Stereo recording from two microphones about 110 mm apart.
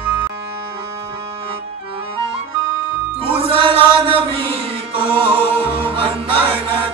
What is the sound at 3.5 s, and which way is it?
Chant, 50° right (ahead or behind).